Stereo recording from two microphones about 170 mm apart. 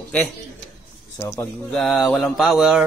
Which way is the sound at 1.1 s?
20° left (ahead or behind).